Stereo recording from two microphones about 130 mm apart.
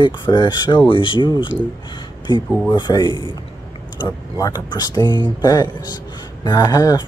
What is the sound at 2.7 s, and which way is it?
Speech, 35° left (ahead or behind).